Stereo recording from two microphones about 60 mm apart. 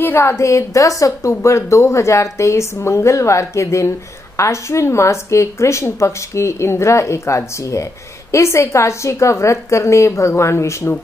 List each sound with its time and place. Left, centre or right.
0.0 s speech: left
1.4 s a woman's voice: left